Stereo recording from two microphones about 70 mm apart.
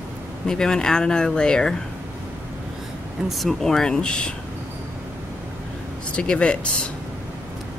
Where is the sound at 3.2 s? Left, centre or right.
Centre.